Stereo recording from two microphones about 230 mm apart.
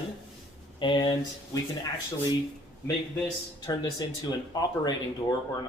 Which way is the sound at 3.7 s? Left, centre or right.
Centre.